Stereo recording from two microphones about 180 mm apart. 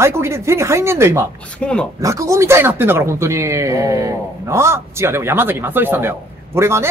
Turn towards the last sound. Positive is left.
turn(degrees=-15)  # may be behind; listen again after turning